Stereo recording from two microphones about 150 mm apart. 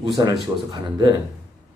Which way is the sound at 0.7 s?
25° right (ahead or behind).